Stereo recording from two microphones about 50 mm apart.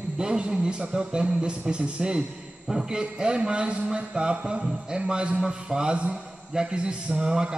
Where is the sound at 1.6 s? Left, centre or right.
Right.